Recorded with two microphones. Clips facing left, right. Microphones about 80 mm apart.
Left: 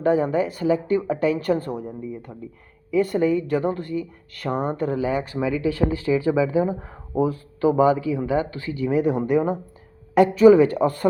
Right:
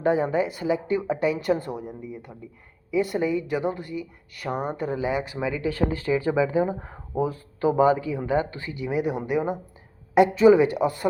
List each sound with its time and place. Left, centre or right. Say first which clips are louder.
0.0 s speech: left 2 dB; right
5.5 s speech: left 3 dB; right; by 9.6 s centre
10.2 s speech: left 3 dB; right